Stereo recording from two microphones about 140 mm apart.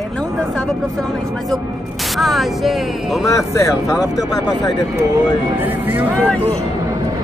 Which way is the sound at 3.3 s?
20° left (ahead or behind).